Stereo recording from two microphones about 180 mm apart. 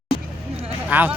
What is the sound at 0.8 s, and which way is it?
Speech, 5° right (ahead or behind).